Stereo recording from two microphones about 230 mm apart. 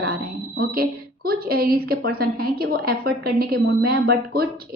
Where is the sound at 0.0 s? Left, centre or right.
Right.